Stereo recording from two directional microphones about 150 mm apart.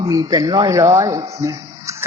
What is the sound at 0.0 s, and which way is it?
A man's voice, 25° right (ahead or behind).